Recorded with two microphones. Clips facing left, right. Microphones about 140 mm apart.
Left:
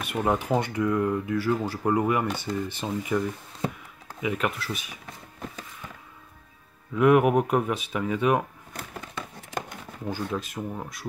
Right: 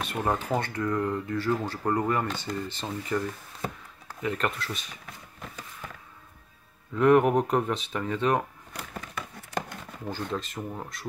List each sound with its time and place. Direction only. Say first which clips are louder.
0.2 s speech: left 3 dB; 5° left (ahead or behind)
7.0 s speech: left 1 dB; 10° left (ahead or behind)
9.1 s a sound: right 1 dB; 15° left (ahead or behind)
10.0 s speech: left 2 dB; 5° left (ahead or behind)